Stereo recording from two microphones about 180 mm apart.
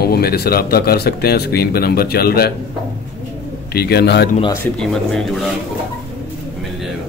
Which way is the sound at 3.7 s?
60° left (ahead or behind).